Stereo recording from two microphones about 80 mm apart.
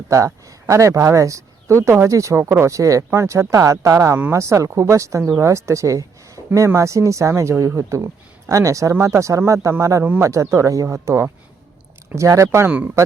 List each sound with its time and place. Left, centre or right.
0.7 s speech: right